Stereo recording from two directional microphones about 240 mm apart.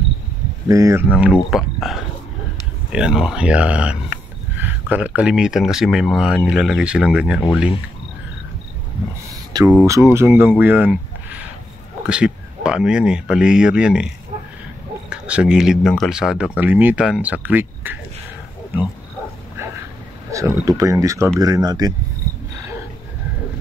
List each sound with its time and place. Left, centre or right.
0.7 s speech: centre
9.5 s speech: centre
20.2 s speech: centre